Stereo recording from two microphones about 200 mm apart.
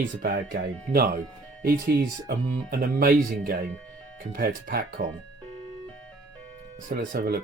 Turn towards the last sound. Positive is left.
turn(degrees=-50)  # may be behind; listen again after turning